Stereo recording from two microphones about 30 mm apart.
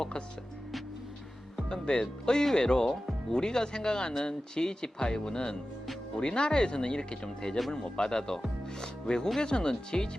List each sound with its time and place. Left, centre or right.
1.7 s speech: left